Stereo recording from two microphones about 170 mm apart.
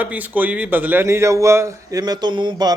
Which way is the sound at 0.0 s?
10° right (ahead or behind).